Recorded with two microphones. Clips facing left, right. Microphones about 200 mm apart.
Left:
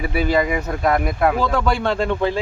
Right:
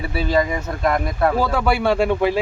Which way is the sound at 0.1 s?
15° left (ahead or behind).